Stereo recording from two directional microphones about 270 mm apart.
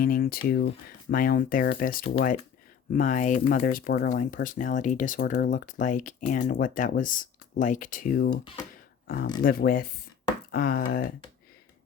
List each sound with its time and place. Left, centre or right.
0.0 s speech: left